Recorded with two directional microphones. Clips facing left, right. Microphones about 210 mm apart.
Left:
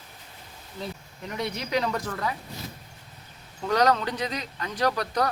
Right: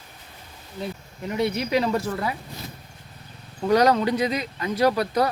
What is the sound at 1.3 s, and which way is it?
Speech, 5° right (ahead or behind).